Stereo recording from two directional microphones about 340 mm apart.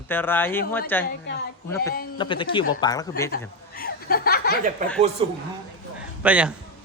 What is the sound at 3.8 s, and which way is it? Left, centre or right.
Chuckle, left.